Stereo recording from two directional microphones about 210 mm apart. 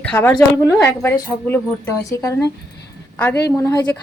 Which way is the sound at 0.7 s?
10° left (ahead or behind).